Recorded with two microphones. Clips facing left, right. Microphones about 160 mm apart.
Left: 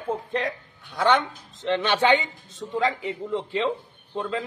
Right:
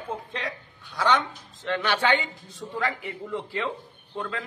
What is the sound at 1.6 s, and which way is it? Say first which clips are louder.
A man's voice: left 4 dB; 20° left (ahead or behind).